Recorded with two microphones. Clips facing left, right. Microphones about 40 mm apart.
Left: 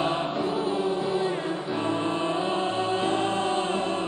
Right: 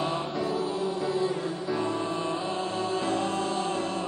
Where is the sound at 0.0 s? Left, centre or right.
Left.